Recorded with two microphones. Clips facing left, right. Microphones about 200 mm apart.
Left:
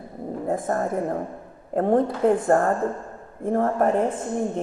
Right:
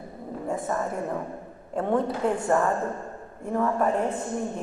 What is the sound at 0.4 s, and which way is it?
Speech, 50° left (ahead or behind).